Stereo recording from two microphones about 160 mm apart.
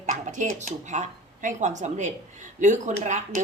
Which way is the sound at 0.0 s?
50° right (ahead or behind).